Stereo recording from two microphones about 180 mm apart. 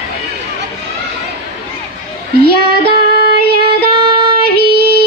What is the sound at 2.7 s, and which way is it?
Female singing, 60° left (ahead or behind).